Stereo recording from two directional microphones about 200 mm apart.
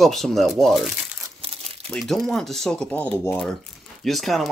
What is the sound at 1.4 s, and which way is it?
Crumpling, 30° right (ahead or behind).